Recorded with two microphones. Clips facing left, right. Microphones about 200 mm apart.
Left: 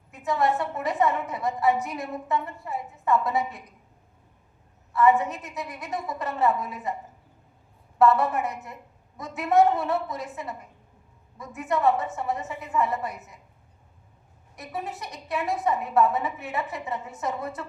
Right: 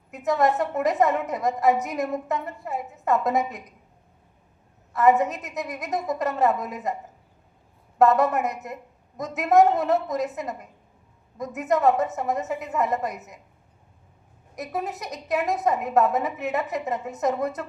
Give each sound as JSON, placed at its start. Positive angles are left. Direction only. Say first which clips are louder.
{"t": 0.1, "sound": "a woman's voice", "louder": "right 3 dB", "side_deg": -40}
{"t": 4.9, "sound": "a woman's voice", "louder": "right 2 dB", "side_deg": -40}
{"t": 7.9, "sound": "a woman's voice", "louder": "right 2 dB", "side_deg": -40}
{"t": 14.5, "sound": "a woman's voice", "louder": "right 4 dB", "side_deg": -40}